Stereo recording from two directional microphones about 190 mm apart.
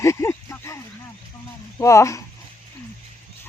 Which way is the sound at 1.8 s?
15° left (ahead or behind).